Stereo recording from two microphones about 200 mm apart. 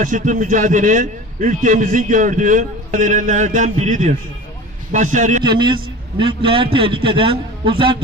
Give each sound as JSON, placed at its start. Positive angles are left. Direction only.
{"t": 0.0, "sound": "a man's voice", "side_deg": -40}
{"t": 5.4, "sound": "a man's voice", "side_deg": -25}